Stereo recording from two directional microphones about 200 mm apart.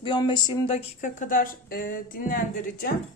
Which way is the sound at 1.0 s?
40° left (ahead or behind).